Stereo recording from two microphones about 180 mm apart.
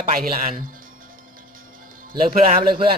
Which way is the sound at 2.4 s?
50° right (ahead or behind).